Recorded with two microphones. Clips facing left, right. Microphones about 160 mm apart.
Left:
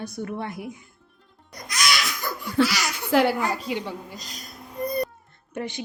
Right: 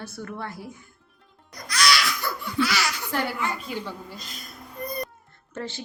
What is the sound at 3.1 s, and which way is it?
Speech, 90° left.